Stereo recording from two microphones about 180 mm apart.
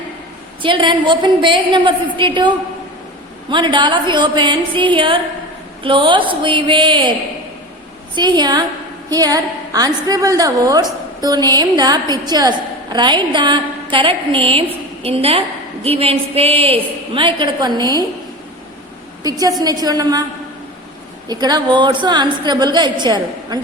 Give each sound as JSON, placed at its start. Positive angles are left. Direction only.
{"t": 0.6, "sound": "a woman's voice", "side_deg": -25}
{"t": 3.5, "sound": "a woman's voice", "side_deg": -25}
{"t": 8.1, "sound": "a woman's voice", "side_deg": -25}
{"t": 19.2, "sound": "a woman's voice", "side_deg": -20}
{"t": 21.2, "sound": "a woman's voice", "side_deg": -20}